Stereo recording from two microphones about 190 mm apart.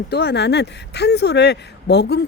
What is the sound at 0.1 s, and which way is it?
Speech, 60° left (ahead or behind).